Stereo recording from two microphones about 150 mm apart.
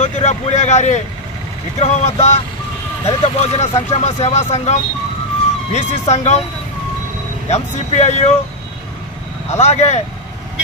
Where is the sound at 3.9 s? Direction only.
50° left (ahead or behind).